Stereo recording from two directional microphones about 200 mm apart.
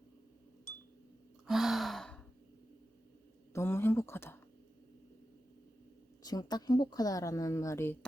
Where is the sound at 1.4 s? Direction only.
Centre (ahead or behind).